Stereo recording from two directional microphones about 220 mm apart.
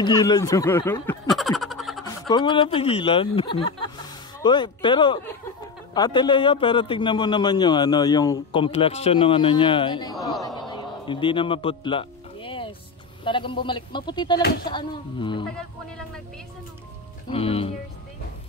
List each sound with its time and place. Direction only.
0.0 s snicker: 20° left (ahead or behind); by 2.0 s centre (ahead or behind)
2.2 s a man's voice: 20° left (ahead or behind)
10.7 s music: 20° left (ahead or behind)
13.2 s a man's voice: 20° left (ahead or behind)
17.3 s a man's voice: 25° left (ahead or behind)